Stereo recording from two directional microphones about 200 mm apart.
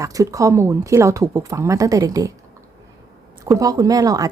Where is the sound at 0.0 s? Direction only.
15° right (ahead or behind).